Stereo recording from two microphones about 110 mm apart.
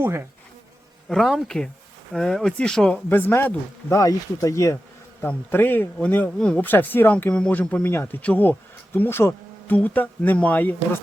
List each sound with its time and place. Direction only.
0.0 s insect: 25° right (ahead or behind)
1.1 s speech: centre (ahead or behind); by 4.8 s 25° left (ahead or behind)
5.2 s speech: 15° left (ahead or behind)